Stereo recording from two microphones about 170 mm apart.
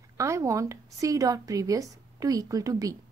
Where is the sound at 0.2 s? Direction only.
20° right (ahead or behind).